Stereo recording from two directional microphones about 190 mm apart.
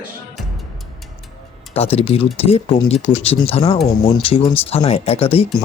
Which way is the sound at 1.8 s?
30° left (ahead or behind).